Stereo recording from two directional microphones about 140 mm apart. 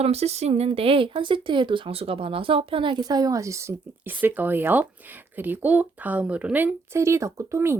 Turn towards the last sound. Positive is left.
turn(degrees=-20)  # may be behind; listen again after turning